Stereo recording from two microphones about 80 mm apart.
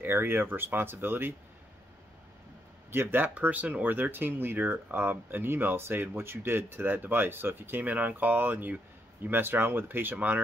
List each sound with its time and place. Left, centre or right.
0.0 s speech: right
2.9 s speech: right